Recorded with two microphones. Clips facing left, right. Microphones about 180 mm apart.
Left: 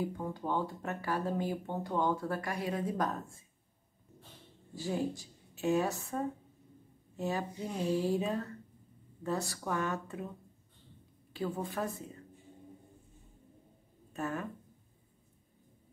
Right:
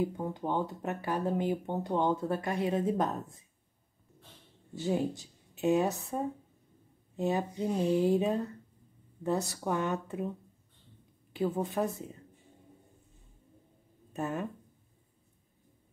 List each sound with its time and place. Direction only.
0.0 s speech: 20° right (ahead or behind)
4.7 s speech: 20° right (ahead or behind)
7.2 s speech: 20° right (ahead or behind)
11.3 s speech: 20° right (ahead or behind)
14.1 s speech: 20° right (ahead or behind)